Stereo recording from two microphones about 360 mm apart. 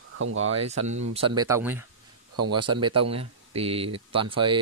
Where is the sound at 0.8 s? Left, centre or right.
Right.